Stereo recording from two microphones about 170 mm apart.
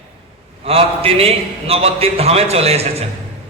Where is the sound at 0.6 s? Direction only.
35° right (ahead or behind).